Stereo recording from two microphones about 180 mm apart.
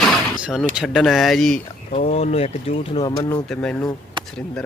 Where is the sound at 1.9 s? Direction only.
35° left (ahead or behind).